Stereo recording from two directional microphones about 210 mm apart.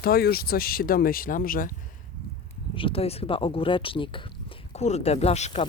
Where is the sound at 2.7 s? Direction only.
25° left (ahead or behind).